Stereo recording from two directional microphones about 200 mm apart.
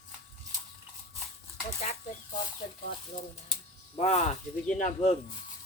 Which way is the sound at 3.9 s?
30° left (ahead or behind).